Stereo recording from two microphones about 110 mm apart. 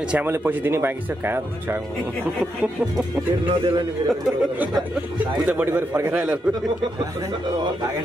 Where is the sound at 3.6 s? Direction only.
45° right (ahead or behind).